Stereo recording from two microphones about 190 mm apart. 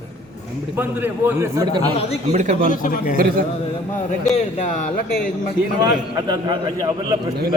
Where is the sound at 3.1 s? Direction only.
50° right (ahead or behind).